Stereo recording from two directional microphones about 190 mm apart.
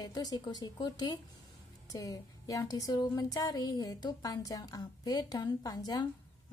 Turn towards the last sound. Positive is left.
turn(degrees=20)  # may be behind; listen again after turning